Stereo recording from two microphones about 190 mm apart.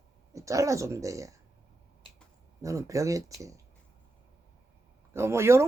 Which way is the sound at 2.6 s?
15° right (ahead or behind).